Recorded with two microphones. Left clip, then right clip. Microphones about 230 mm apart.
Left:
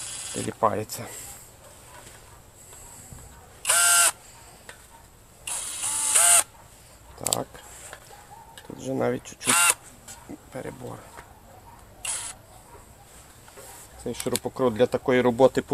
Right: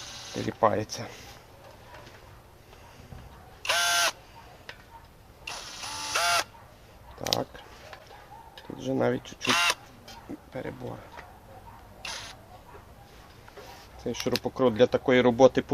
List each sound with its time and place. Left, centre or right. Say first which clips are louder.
0.3 s speech: even; centre
3.6 s camera: left 3 dB; centre
5.8 s camera: left 2 dB; centre
7.2 s a sound: even; centre
8.5 s camera: even; centre
12.0 s camera: left 2 dB; centre
14.0 s speech: even; centre